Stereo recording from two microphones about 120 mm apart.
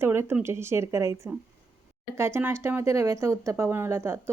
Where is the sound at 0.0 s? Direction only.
20° right (ahead or behind).